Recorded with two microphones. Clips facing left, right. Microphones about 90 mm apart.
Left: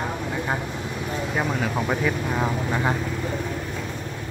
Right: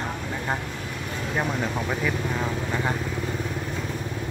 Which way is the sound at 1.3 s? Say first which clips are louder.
Even; 5° left (ahead or behind).